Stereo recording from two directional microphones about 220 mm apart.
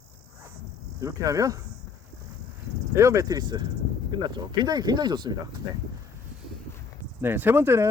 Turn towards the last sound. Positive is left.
turn(degrees=-10)  # may be behind; listen again after turning